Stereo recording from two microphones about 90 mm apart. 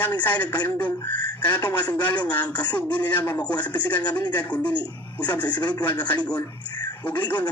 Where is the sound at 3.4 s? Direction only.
15° left (ahead or behind).